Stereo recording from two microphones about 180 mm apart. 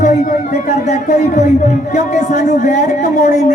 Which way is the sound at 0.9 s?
40° left (ahead or behind).